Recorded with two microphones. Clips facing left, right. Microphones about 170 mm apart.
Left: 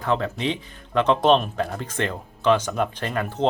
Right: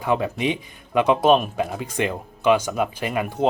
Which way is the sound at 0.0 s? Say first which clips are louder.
Right 2 dB; 10° right (ahead or behind).